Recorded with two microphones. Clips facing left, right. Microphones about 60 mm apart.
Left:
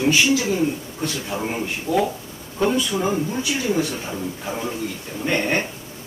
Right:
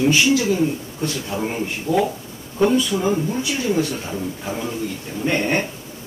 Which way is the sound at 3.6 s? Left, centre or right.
Left.